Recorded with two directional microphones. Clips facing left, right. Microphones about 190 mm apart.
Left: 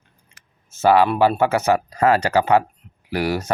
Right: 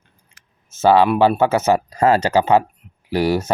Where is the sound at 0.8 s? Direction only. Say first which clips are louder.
Right 2 dB; 25° right (ahead or behind).